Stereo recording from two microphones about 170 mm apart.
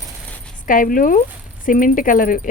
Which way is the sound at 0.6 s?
55° left (ahead or behind).